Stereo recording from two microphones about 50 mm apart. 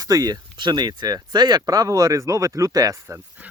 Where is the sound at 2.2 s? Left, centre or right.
Right.